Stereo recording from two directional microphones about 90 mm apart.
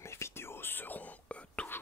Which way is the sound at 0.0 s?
30° left (ahead or behind).